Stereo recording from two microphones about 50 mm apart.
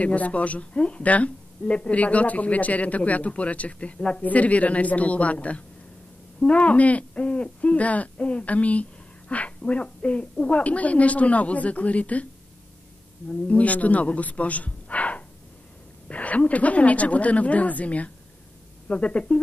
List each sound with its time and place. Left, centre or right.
0.0 s a woman's voice: left
13.5 s a woman's voice: left